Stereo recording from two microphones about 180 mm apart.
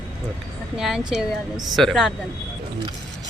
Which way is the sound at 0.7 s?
Centre (ahead or behind).